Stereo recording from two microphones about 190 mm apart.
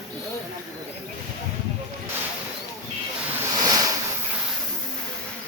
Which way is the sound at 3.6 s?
20° right (ahead or behind).